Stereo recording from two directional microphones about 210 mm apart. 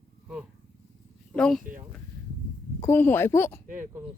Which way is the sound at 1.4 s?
5° left (ahead or behind).